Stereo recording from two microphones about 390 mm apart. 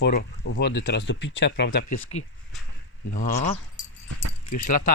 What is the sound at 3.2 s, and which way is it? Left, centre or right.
Speech, centre.